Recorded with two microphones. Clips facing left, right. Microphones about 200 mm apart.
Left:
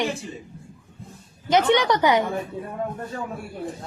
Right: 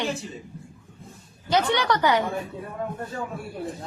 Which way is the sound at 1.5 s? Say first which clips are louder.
Left 4 dB; 20° left (ahead or behind).